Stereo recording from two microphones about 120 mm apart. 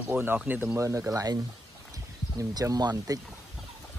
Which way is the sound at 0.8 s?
25° right (ahead or behind).